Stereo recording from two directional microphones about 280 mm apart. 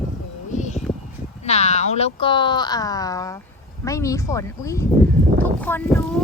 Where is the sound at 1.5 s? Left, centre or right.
Left.